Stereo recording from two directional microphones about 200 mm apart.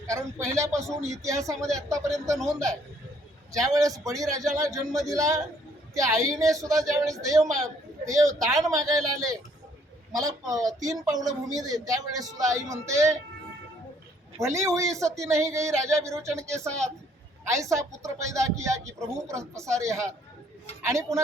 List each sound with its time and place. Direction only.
0.1 s a man's voice: 15° right (ahead or behind)
14.3 s a man's voice: 15° right (ahead or behind)